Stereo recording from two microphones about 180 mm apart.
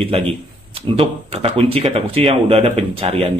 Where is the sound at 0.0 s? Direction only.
30° right (ahead or behind).